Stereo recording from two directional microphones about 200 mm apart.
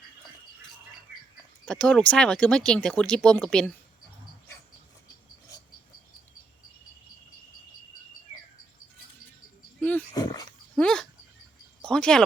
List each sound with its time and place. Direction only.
1.6 s speech: 5° left (ahead or behind)
10.2 s dog: 20° left (ahead or behind)
10.8 s dog: 5° left (ahead or behind)
11.8 s a sound: 5° left (ahead or behind)